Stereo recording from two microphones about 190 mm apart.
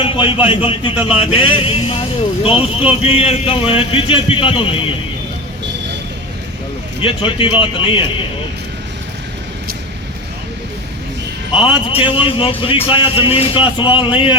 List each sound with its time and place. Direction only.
0.0 s a man's voice: 25° left (ahead or behind)
7.0 s a man's voice: 30° left (ahead or behind)
11.5 s a man's voice: 30° left (ahead or behind)